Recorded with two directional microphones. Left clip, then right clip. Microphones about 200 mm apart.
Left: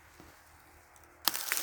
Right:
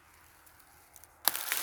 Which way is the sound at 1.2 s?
10° right (ahead or behind).